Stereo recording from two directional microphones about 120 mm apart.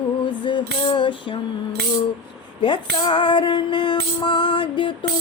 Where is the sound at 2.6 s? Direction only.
40° left (ahead or behind).